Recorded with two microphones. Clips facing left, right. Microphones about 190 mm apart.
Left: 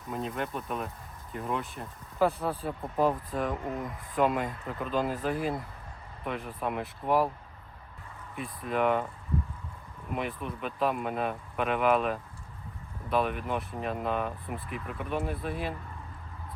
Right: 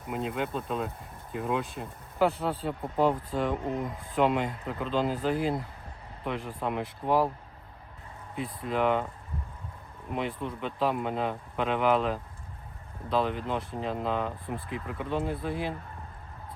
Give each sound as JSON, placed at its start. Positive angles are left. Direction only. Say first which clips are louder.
{"t": 0.1, "sound": "speech", "louder": "right 2 dB", "side_deg": -20}
{"t": 2.5, "sound": "speech", "louder": "right 2 dB", "side_deg": -25}
{"t": 8.4, "sound": "speech", "louder": "right 1 dB", "side_deg": -20}
{"t": 10.1, "sound": "speech", "louder": "right 2 dB", "side_deg": -25}